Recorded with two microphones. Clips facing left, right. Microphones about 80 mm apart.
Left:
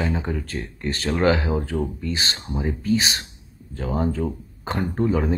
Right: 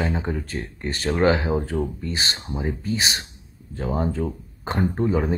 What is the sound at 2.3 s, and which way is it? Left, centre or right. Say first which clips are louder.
Speech: left 1 dB; centre.